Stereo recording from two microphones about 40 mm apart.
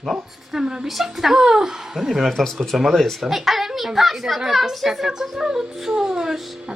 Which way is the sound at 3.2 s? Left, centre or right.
Centre.